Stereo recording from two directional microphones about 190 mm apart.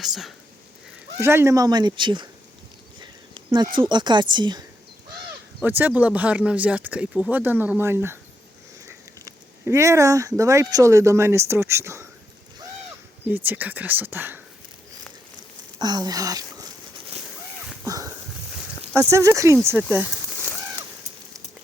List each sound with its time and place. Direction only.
0.0 s speech: centre (ahead or behind)
1.2 s speech: 15° right (ahead or behind)
3.0 s a sound: 25° right (ahead or behind)
3.8 s speech: 25° right (ahead or behind)
5.6 s speech: 10° right (ahead or behind)
9.2 s speech: 15° right (ahead or behind)
13.2 s speech: 10° right (ahead or behind)
15.8 s a sound: 20° right (ahead or behind)
18.9 s speech: 15° right (ahead or behind)